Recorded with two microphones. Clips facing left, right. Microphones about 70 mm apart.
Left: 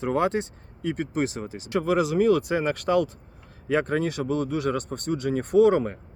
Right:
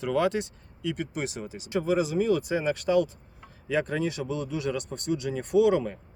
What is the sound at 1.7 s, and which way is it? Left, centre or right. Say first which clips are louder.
Speech: left 3 dB; left.